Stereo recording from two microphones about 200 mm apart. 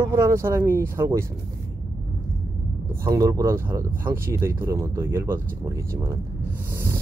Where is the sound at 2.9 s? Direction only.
15° right (ahead or behind).